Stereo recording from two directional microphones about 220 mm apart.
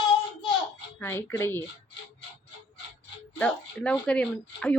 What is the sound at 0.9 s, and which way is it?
Speech, 10° left (ahead or behind).